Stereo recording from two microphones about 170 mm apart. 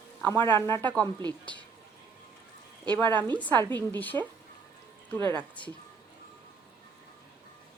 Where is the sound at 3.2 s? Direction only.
10° left (ahead or behind).